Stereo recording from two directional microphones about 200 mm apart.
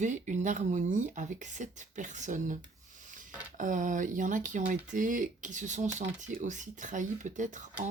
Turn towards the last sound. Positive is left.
turn(degrees=-40)  # may be behind; listen again after turning